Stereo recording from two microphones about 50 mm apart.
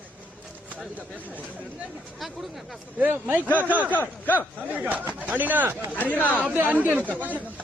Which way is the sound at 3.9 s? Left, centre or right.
Left.